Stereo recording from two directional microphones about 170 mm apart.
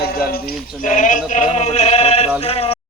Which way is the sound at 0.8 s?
50° left (ahead or behind).